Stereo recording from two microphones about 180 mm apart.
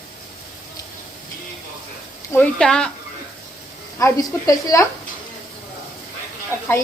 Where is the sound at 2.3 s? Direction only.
5° left (ahead or behind).